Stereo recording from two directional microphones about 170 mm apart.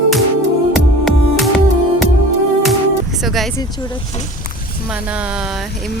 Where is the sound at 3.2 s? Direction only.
Centre (ahead or behind).